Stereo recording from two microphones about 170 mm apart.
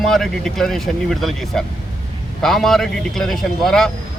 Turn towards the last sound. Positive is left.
turn(degrees=0)  # may be behind; listen again after turning